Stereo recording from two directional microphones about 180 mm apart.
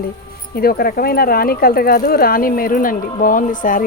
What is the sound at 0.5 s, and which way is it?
Speech, 55° left (ahead or behind).